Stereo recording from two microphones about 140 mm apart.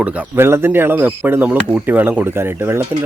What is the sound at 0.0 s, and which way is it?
Speech, 15° right (ahead or behind).